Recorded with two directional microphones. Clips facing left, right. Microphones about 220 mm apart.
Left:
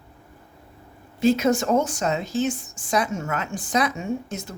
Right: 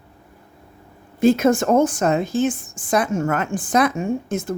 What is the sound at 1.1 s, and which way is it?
A woman's voice, 50° right (ahead or behind).